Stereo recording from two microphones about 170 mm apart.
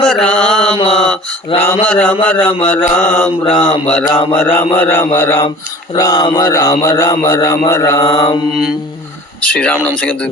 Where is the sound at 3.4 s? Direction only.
30° left (ahead or behind).